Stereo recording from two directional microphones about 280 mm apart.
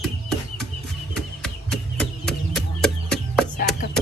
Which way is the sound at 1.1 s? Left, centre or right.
Centre.